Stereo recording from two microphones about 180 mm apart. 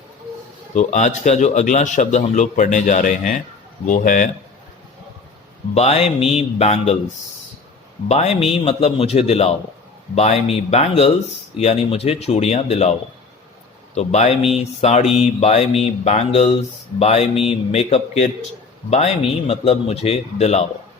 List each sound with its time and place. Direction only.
0.7 s a man's voice: 40° left (ahead or behind)
5.7 s speech: 35° left (ahead or behind)
8.0 s speech: 35° left (ahead or behind)
13.9 s speech: 40° left (ahead or behind)